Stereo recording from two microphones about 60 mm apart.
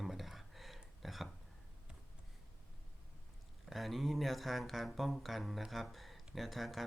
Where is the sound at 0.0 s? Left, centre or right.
Centre.